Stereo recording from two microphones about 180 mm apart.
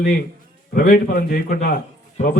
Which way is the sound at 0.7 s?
55° left (ahead or behind).